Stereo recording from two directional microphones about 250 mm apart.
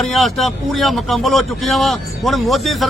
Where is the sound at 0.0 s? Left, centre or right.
Centre.